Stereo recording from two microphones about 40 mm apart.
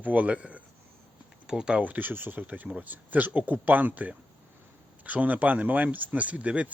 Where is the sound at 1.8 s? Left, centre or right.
Right.